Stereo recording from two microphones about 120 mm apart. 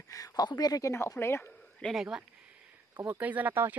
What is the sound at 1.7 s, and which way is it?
Speech, centre (ahead or behind).